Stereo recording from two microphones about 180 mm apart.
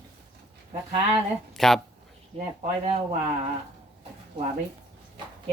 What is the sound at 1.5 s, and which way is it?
Speech, centre (ahead or behind).